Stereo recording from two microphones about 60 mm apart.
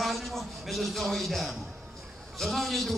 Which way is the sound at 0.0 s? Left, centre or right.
Centre.